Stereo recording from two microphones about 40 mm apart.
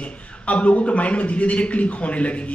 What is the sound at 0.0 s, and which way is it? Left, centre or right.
A man's voice, left.